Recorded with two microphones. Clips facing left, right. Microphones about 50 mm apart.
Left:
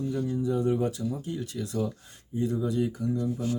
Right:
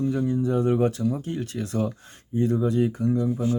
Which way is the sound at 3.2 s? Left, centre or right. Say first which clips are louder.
Right 5 dB; right.